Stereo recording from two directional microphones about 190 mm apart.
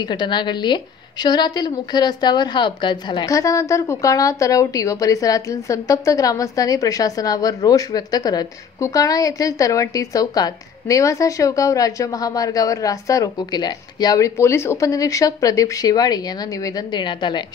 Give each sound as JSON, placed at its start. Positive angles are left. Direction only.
{"t": 0.0, "sound": "a woman's voice", "side_deg": 20}